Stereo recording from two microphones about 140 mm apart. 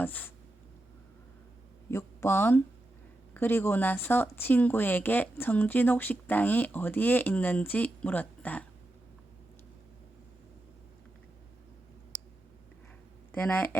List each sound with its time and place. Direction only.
0.0 s speech: 15° left (ahead or behind)
1.9 s speech: 20° left (ahead or behind)
13.3 s speech: 10° left (ahead or behind)